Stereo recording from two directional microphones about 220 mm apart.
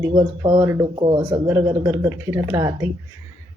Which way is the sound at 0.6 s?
10° right (ahead or behind).